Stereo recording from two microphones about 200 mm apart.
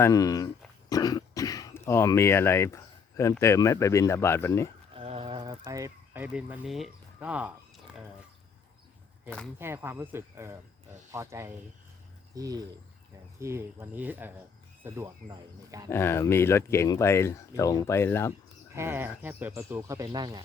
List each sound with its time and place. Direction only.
0.0 s speech: 15° left (ahead or behind)
4.9 s a sound: 30° right (ahead or behind); by 7.5 s 5° right (ahead or behind)
9.6 s speech: 10° right (ahead or behind)
15.9 s speech: 10° left (ahead or behind)
18.7 s speech: 10° right (ahead or behind)